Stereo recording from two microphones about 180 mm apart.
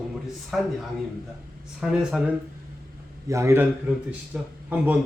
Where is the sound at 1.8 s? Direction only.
5° right (ahead or behind).